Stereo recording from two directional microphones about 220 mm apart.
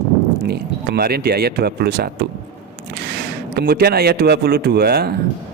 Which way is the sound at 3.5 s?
45° right (ahead or behind).